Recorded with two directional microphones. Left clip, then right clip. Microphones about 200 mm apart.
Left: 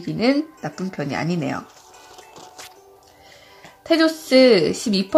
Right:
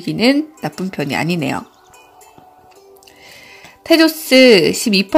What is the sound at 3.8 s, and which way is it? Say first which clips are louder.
Speech: right 6 dB; 15° right (ahead or behind).